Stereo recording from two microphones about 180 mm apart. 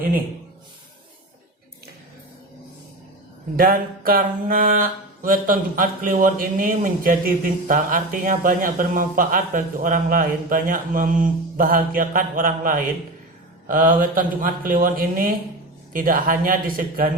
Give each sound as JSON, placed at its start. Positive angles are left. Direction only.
{"t": 3.6, "sound": "mantra", "side_deg": -55}